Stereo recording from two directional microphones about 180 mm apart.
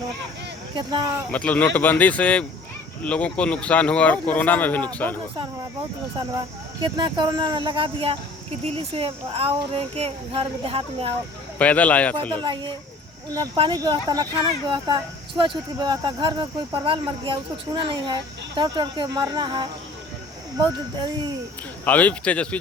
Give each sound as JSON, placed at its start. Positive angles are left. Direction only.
{"t": 0.8, "sound": "speech", "side_deg": -25}
{"t": 1.3, "sound": "speech", "side_deg": 5}
{"t": 6.8, "sound": "speech", "side_deg": -25}
{"t": 11.5, "sound": "speech", "side_deg": 10}
{"t": 12.3, "sound": "speech", "side_deg": -25}
{"t": 21.8, "sound": "speech", "side_deg": 10}